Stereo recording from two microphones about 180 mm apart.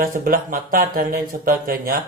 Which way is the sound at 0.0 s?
50° right (ahead or behind).